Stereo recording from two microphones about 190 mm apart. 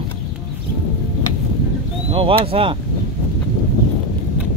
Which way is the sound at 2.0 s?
30° right (ahead or behind).